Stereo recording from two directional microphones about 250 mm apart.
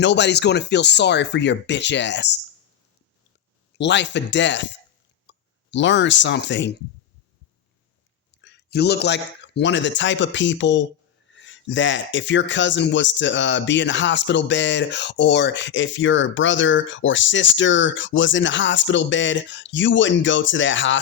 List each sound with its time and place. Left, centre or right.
0.0 s speech: left
3.8 s speech: left
5.3 s a sound: left
5.7 s speech: left
8.3 s speech: left